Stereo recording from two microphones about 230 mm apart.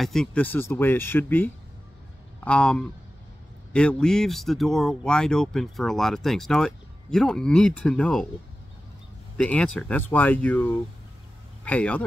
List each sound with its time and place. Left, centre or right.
0.0 s speech: centre
9.4 s speech: centre